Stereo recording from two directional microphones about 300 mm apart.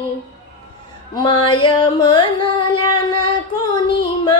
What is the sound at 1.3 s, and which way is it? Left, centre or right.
Carnatic music, centre.